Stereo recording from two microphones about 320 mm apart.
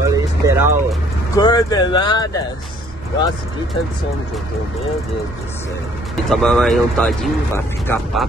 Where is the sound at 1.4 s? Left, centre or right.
Centre.